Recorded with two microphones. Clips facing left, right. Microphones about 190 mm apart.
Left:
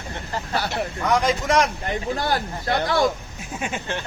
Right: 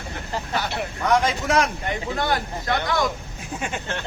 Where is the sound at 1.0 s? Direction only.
Centre (ahead or behind).